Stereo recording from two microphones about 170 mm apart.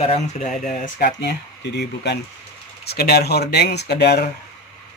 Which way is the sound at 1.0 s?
75° left (ahead or behind).